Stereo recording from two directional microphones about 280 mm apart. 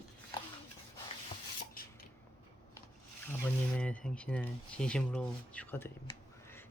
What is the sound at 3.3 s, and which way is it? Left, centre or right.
Speech, centre.